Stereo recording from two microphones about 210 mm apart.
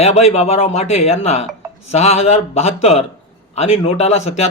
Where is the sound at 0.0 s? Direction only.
30° left (ahead or behind).